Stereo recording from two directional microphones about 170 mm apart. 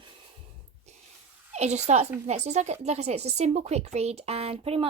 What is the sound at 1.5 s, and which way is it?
Speech, 40° right (ahead or behind).